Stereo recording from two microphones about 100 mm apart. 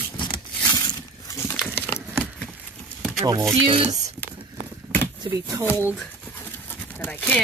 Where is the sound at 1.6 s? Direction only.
20° left (ahead or behind).